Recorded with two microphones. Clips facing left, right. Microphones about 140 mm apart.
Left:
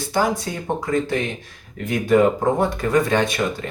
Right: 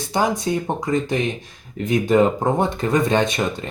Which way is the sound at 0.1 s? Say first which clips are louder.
Right 2 dB; 20° right (ahead or behind).